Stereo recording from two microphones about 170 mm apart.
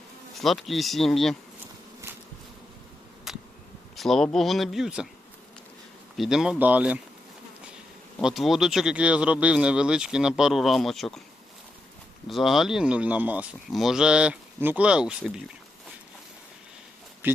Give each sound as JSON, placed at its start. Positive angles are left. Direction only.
{"t": 0.4, "sound": "speech", "side_deg": 0}
{"t": 3.3, "sound": "insect", "side_deg": 0}
{"t": 3.9, "sound": "speech", "side_deg": 0}
{"t": 6.1, "sound": "speech", "side_deg": -5}
{"t": 8.2, "sound": "speech", "side_deg": 0}
{"t": 12.3, "sound": "speech", "side_deg": 0}
{"t": 17.2, "sound": "speech", "side_deg": -10}